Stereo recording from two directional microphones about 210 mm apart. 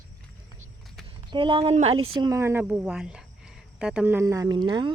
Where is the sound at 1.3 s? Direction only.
25° right (ahead or behind).